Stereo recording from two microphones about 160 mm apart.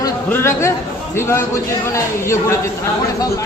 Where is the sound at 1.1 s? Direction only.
15° left (ahead or behind).